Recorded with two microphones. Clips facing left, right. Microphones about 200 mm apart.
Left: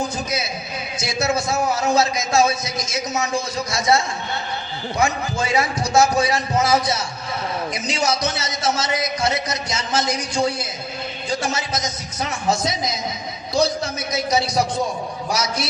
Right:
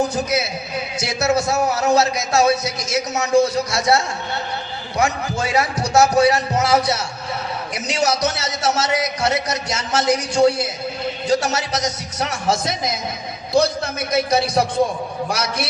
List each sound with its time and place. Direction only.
0.0 s a man's voice: 70° right (ahead or behind)